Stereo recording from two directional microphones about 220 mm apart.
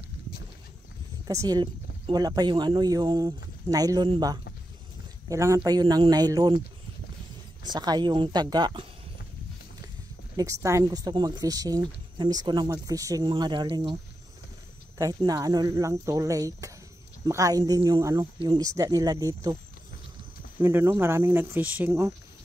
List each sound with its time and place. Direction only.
1.2 s speech: 15° right (ahead or behind)
7.6 s speech: 20° right (ahead or behind)
10.3 s speech: 15° right (ahead or behind)
15.0 s speech: 15° right (ahead or behind)
20.6 s speech: 10° right (ahead or behind)